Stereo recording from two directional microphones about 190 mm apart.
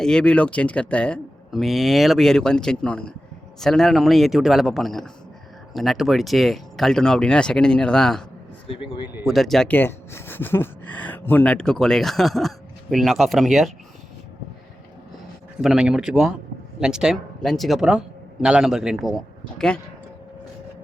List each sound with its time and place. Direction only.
0.0 s speech: 5° left (ahead or behind)
8.6 s speech: 30° left (ahead or behind)
9.2 s speech: centre (ahead or behind)
15.6 s speech: 5° right (ahead or behind)